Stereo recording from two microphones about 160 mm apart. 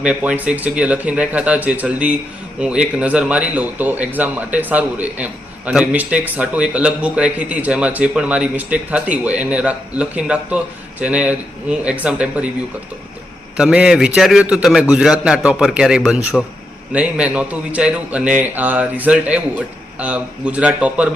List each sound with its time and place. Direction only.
0.0 s speech: 5° right (ahead or behind)
13.6 s a man's voice: 5° right (ahead or behind)